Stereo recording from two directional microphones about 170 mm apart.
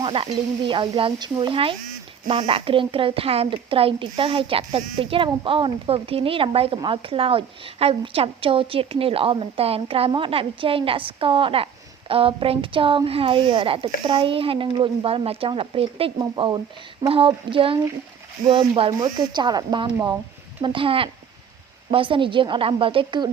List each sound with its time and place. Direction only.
0.0 s speech: 30° right (ahead or behind)
18.8 s speech: 25° right (ahead or behind)